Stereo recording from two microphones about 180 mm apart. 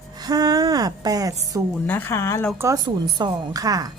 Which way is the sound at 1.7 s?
10° left (ahead or behind).